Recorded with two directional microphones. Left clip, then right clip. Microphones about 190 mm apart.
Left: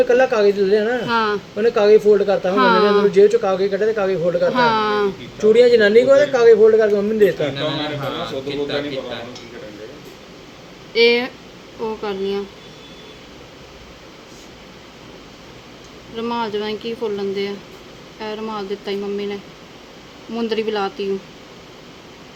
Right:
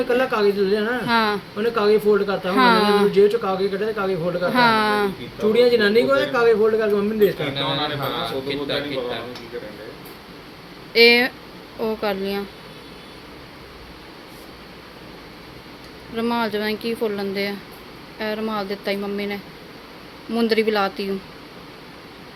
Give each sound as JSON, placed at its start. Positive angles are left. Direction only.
{"t": 0.1, "sound": "a man's voice", "side_deg": -5}
{"t": 1.0, "sound": "speech", "side_deg": -15}
{"t": 1.5, "sound": "a man's voice", "side_deg": -5}
{"t": 2.5, "sound": "a man's voice", "side_deg": -15}
{"t": 4.5, "sound": "speech", "side_deg": -15}
{"t": 5.4, "sound": "a man's voice", "side_deg": -5}
{"t": 10.9, "sound": "speech", "side_deg": -15}
{"t": 16.1, "sound": "speech", "side_deg": -15}